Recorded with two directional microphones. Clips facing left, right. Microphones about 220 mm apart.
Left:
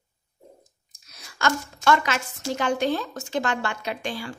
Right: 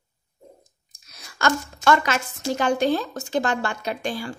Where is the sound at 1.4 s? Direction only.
40° right (ahead or behind).